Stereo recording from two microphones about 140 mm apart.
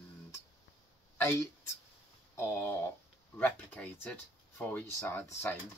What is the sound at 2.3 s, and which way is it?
Speech, 15° left (ahead or behind).